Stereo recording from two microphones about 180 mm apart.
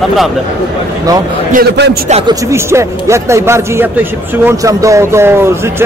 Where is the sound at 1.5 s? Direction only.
65° right (ahead or behind).